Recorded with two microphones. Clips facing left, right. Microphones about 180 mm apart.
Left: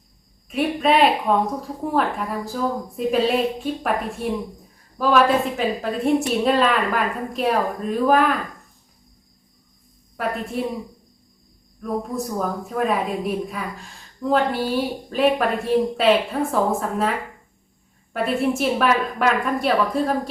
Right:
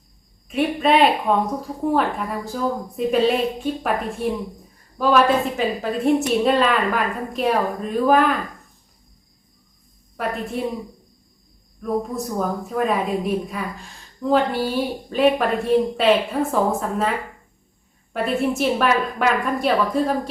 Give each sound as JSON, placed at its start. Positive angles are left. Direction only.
{"t": 0.4, "sound": "a woman's voice", "side_deg": 0}
{"t": 10.2, "sound": "a woman's voice", "side_deg": 0}
{"t": 11.8, "sound": "a woman's voice", "side_deg": 0}